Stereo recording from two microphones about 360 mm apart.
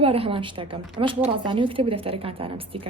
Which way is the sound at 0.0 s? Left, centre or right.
Centre.